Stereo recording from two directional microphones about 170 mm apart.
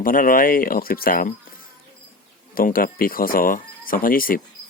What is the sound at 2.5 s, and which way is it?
Speech, 55° left (ahead or behind).